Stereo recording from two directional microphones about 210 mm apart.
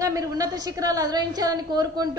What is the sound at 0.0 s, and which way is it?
A woman's voice, 15° right (ahead or behind).